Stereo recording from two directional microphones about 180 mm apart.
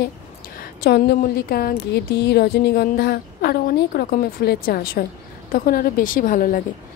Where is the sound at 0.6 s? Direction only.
60° left (ahead or behind).